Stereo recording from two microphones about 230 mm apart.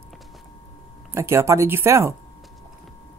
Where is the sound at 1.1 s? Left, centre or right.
Centre.